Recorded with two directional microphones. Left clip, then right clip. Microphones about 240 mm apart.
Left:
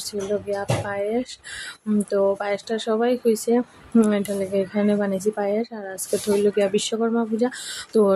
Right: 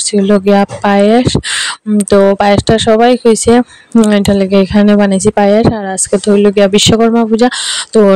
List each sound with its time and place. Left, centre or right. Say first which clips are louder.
0.1 s speech: right 16 dB; right